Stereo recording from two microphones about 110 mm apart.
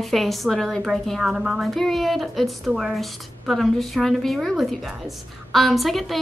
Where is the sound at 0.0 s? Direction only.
Centre (ahead or behind).